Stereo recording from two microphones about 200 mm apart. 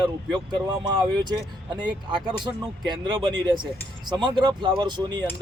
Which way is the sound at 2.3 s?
20° right (ahead or behind).